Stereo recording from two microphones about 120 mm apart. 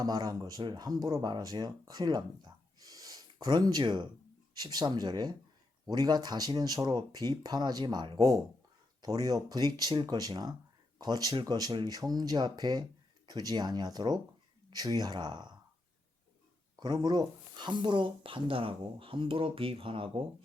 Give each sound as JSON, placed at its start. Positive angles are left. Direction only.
{"t": 0.0, "sound": "speech", "side_deg": -35}
{"t": 16.7, "sound": "speech", "side_deg": -35}